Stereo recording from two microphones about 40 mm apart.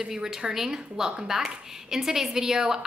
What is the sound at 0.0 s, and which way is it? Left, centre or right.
A woman's voice, centre.